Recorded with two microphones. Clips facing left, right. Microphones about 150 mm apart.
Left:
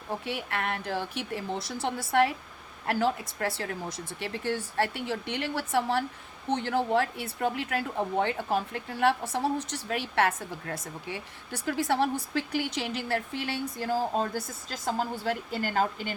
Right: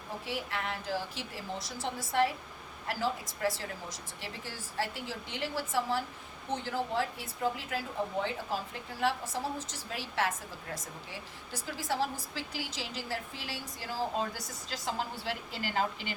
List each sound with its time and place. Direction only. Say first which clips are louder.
0.3 s a woman's voice: left 2 dB; 60° left (ahead or behind); by 16.1 s 45° left (ahead or behind)